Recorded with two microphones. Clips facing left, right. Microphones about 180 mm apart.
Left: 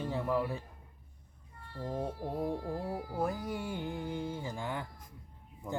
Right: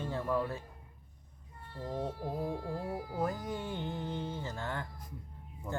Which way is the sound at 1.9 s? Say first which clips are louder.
Even; 10° left (ahead or behind).